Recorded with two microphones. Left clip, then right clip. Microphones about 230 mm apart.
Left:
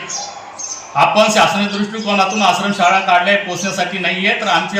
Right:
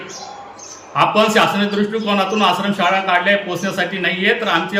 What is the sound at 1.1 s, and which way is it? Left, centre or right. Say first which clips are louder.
Speech: left 1 dB; right.